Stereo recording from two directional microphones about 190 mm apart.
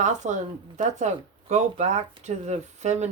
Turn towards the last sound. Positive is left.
turn(degrees=-35)  # may be behind; listen again after turning